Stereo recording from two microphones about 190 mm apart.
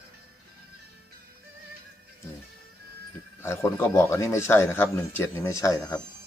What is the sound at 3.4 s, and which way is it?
A man's voice, 15° left (ahead or behind).